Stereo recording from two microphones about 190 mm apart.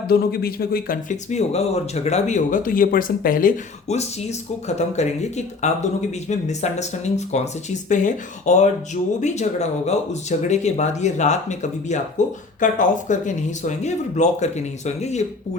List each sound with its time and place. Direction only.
0.1 s speech: 55° left (ahead or behind); by 15.2 s 35° left (ahead or behind)